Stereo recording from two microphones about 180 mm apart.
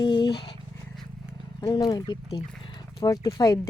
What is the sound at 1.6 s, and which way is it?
Speech, 25° left (ahead or behind).